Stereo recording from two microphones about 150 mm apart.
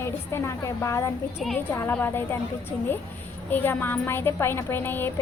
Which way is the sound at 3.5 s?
15° left (ahead or behind).